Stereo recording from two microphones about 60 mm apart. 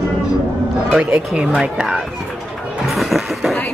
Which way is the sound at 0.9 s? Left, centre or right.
Centre.